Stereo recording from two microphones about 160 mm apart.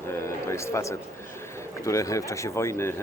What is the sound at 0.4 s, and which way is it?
Speech, 15° left (ahead or behind).